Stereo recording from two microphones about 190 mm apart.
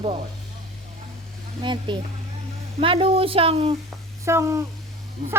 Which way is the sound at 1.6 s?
25° right (ahead or behind).